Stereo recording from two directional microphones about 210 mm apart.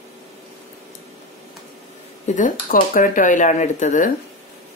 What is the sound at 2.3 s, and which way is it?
Speech, 40° left (ahead or behind).